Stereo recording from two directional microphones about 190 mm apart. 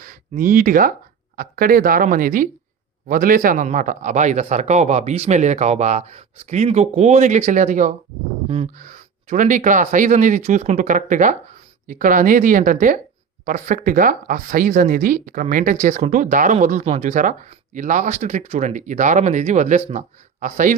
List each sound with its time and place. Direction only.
0.0 s speech: 45° right (ahead or behind)